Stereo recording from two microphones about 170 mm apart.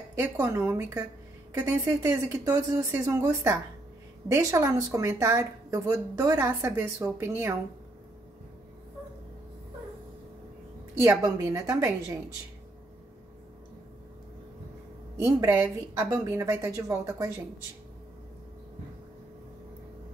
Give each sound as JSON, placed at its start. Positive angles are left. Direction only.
{"t": 0.1, "sound": "speech", "side_deg": -15}
{"t": 11.0, "sound": "a woman's voice", "side_deg": -20}
{"t": 15.1, "sound": "speech", "side_deg": -15}